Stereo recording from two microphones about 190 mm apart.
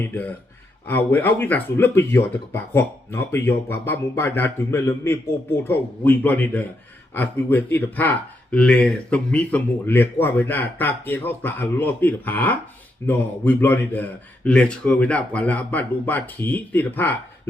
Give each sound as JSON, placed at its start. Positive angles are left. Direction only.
{"t": 0.0, "sound": "speech", "side_deg": 10}